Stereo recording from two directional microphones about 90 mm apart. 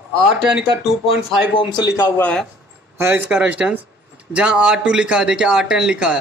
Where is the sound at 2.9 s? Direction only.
25° right (ahead or behind).